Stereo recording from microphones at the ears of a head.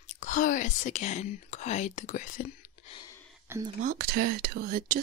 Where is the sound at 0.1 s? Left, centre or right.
Left.